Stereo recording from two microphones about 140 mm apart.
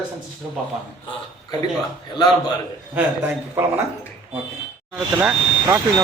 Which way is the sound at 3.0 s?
15° right (ahead or behind).